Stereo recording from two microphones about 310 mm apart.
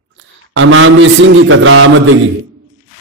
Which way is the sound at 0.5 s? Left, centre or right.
Right.